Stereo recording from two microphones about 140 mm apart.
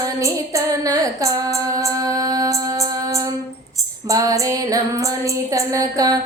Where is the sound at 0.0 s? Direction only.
25° right (ahead or behind).